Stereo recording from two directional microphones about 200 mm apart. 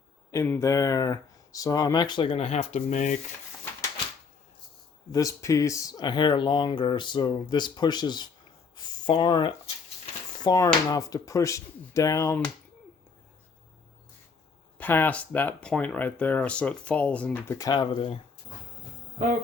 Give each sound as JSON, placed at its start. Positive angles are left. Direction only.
{"t": 0.3, "sound": "speech", "side_deg": 10}
{"t": 5.1, "sound": "speech", "side_deg": 15}
{"t": 14.8, "sound": "speech", "side_deg": 10}